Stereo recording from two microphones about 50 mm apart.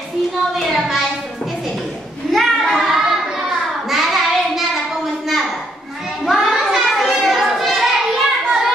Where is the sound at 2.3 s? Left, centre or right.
Centre.